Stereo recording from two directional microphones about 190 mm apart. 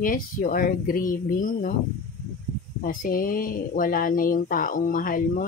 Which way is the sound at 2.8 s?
45° left (ahead or behind).